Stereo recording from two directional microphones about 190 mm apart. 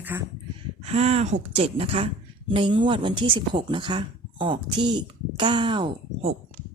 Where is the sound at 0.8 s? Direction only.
35° right (ahead or behind).